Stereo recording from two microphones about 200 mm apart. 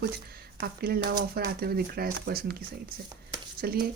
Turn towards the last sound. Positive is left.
turn(degrees=-50)  # may be behind; listen again after turning